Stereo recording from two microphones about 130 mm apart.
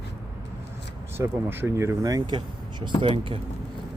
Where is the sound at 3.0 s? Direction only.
40° right (ahead or behind).